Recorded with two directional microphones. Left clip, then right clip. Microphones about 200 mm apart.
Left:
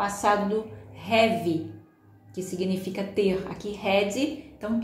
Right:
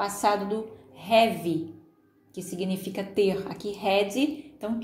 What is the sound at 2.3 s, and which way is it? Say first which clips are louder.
A woman's voice: left 3 dB; 35° right (ahead or behind).